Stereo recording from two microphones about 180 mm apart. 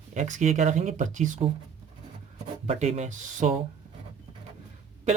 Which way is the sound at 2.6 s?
35° right (ahead or behind).